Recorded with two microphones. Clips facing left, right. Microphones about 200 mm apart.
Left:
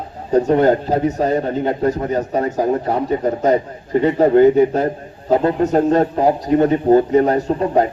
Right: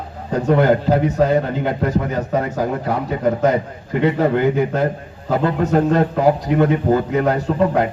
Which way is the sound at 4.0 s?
35° left (ahead or behind).